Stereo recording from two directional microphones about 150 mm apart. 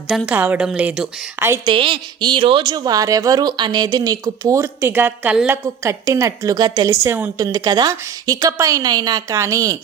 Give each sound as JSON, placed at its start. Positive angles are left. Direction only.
{"t": 0.3, "sound": "a woman's voice", "side_deg": -10}
{"t": 1.6, "sound": "speech", "side_deg": -35}